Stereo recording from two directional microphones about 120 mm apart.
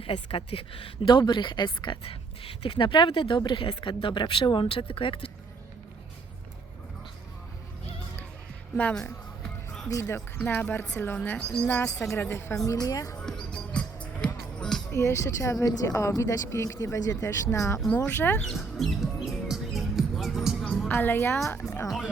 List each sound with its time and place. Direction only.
0.0 s a woman's voice: 50° left (ahead or behind)
8.7 s speech: 10° left (ahead or behind)
9.9 s speech: 20° left (ahead or behind)
12.6 s speech: 30° left (ahead or behind)
13.1 s music: 5° left (ahead or behind)
14.8 s speech: 25° left (ahead or behind)
18.4 s music: centre (ahead or behind)
20.7 s a woman's voice: 15° left (ahead or behind)
21.8 s speech: centre (ahead or behind)